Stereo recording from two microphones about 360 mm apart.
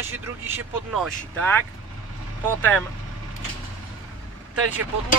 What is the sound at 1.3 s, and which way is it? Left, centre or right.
Speech, centre.